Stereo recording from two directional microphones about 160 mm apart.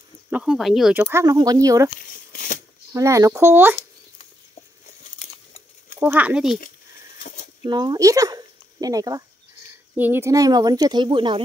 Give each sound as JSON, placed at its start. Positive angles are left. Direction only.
{"t": 0.3, "sound": "speech", "side_deg": -5}
{"t": 1.1, "sound": "speech", "side_deg": -25}
{"t": 2.0, "sound": "a sound", "side_deg": 60}
{"t": 2.9, "sound": "speech", "side_deg": -20}
{"t": 5.0, "sound": "a sound", "side_deg": 50}
{"t": 5.9, "sound": "speech", "side_deg": -10}
{"t": 7.2, "sound": "a sound", "side_deg": 50}
{"t": 7.6, "sound": "speech", "side_deg": -25}
{"t": 9.9, "sound": "speech", "side_deg": -10}